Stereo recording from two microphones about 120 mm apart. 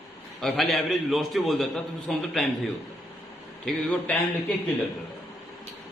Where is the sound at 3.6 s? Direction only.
5° left (ahead or behind).